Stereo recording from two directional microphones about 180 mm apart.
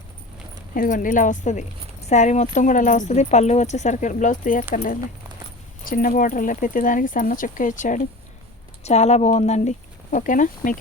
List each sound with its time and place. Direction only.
0.7 s speech: 50° left (ahead or behind)